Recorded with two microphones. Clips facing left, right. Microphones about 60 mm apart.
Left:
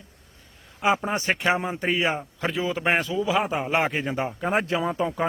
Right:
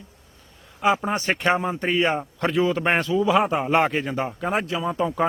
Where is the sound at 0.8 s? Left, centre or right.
Centre.